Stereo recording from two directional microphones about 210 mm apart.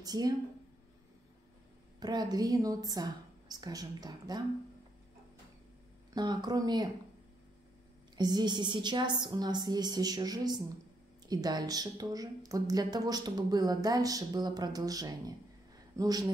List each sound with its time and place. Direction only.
0.0 s speech: 20° right (ahead or behind)
2.0 s speech: 20° right (ahead or behind)
6.1 s a woman's voice: 20° right (ahead or behind)
8.2 s a woman's voice: 20° right (ahead or behind)